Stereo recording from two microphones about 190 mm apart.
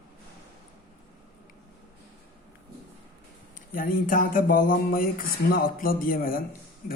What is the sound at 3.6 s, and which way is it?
Speech, 45° left (ahead or behind).